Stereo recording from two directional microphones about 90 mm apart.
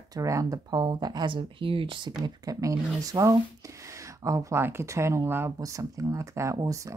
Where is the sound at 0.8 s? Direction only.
55° right (ahead or behind); by 5.5 s 25° right (ahead or behind).